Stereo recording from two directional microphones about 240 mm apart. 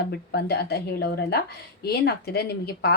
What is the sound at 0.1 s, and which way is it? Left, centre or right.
Speech, left.